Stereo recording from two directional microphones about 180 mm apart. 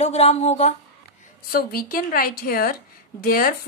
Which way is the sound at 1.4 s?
55° left (ahead or behind).